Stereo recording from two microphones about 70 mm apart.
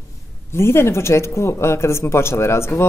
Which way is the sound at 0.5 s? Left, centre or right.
Left.